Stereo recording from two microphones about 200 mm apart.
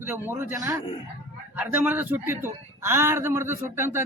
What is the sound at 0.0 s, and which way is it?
A man's voice, 10° right (ahead or behind).